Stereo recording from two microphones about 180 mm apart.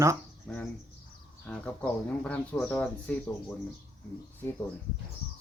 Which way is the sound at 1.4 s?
5° left (ahead or behind).